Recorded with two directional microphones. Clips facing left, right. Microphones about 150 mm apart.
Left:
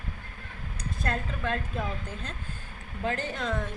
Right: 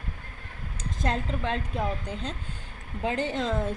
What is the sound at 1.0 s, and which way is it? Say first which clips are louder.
A woman's voice: right 3 dB; 20° right (ahead or behind).